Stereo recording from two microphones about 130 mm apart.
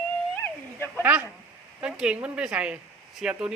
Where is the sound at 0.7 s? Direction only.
15° left (ahead or behind).